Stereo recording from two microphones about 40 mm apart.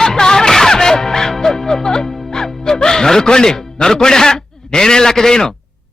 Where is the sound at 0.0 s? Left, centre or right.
Centre.